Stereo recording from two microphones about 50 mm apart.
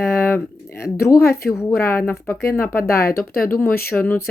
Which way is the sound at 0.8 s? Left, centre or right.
Left.